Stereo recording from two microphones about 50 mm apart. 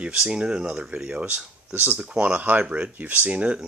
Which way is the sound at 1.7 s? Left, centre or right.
Right.